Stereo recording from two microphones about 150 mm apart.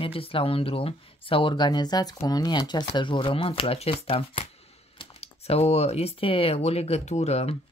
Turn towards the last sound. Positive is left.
turn(degrees=45)  # may be behind; listen again after turning